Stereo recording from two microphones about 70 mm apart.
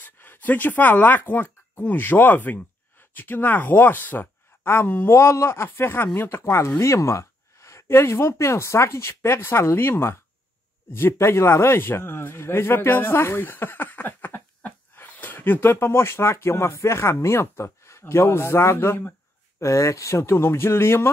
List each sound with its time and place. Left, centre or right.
0.0 s speech: left
6.8 s a man's voice: left
19.6 s speech: left